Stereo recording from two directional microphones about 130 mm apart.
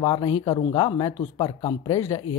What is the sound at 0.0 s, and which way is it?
Speech, 40° left (ahead or behind).